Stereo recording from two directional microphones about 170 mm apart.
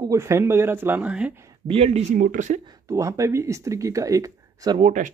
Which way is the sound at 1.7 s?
35° right (ahead or behind).